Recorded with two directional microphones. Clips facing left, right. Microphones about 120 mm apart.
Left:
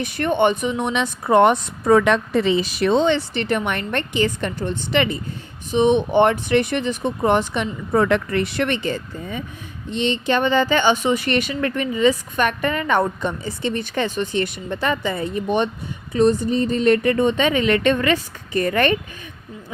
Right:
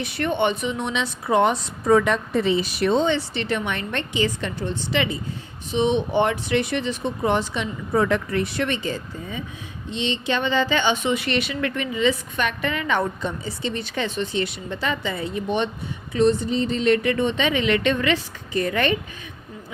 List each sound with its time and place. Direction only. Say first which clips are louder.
0.0 s speech: left 4 dB; 45° left (ahead or behind); by 3.2 s 80° left
3.3 s speech: left 3 dB; 50° left (ahead or behind)
9.9 s a woman's voice: left 4 dB; 50° left (ahead or behind)